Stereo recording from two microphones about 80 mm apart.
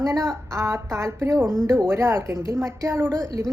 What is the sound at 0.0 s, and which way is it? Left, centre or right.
A woman's voice, right.